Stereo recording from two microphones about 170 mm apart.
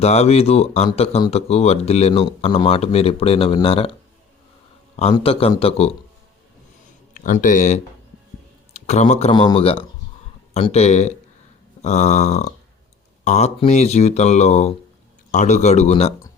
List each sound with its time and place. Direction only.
0.0 s speech: 40° left (ahead or behind)
5.1 s speech: 35° left (ahead or behind)
7.1 s speech: 50° left (ahead or behind)